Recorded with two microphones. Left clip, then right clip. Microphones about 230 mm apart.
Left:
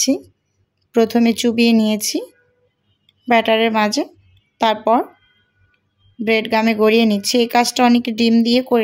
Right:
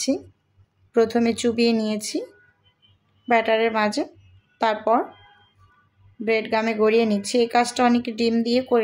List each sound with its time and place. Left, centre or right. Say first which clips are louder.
0.9 s speech: left 4 dB; left
3.3 s speech: left 5 dB; left
6.2 s speech: left 5 dB; left